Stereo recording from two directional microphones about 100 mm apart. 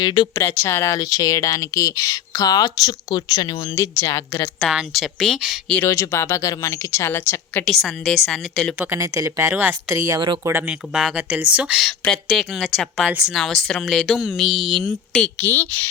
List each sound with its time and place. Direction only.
0.0 s speech: 45° left (ahead or behind)
0.3 s speech: 25° left (ahead or behind)
0.9 s speech: 35° left (ahead or behind)
4.6 s speech: 5° right (ahead or behind)
5.8 s speech: 30° left (ahead or behind)
7.6 s speech: 5° left (ahead or behind)
8.9 s speech: 30° right (ahead or behind)
10.7 s speech: 5° right (ahead or behind)
12.0 s speech: 10° left (ahead or behind)
13.1 s speech: 15° right (ahead or behind)
13.3 s speech: centre (ahead or behind)
15.4 s speech: 20° left (ahead or behind)